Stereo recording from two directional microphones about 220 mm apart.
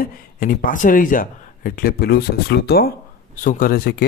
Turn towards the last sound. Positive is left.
turn(degrees=45)  # may be behind; listen again after turning